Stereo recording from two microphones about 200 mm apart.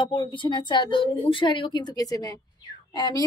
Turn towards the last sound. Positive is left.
turn(degrees=20)  # may be behind; listen again after turning